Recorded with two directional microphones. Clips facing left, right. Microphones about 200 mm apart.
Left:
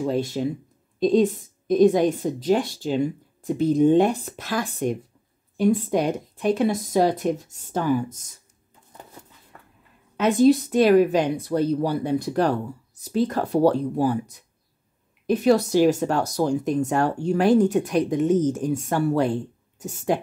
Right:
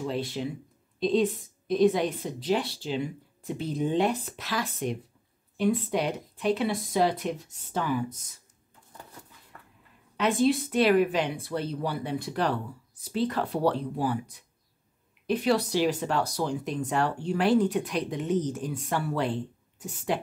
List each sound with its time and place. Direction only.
0.0 s speech: 45° left (ahead or behind)
10.1 s speech: 40° left (ahead or behind)